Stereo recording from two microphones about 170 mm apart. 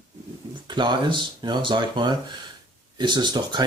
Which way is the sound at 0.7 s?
25° right (ahead or behind).